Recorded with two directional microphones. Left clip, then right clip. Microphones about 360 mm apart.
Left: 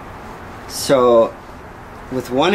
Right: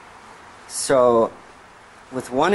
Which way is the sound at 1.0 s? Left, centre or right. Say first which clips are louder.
Left 4 dB; right.